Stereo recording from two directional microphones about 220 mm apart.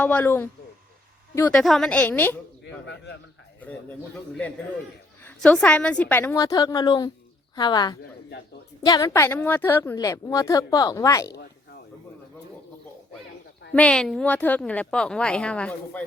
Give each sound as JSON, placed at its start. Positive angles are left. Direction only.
{"t": 0.0, "sound": "a woman's voice", "side_deg": 5}
{"t": 2.6, "sound": "speech", "side_deg": 50}
{"t": 3.6, "sound": "a woman's voice", "side_deg": 5}
{"t": 5.2, "sound": "a woman's voice", "side_deg": 5}
{"t": 13.7, "sound": "a woman's voice", "side_deg": 5}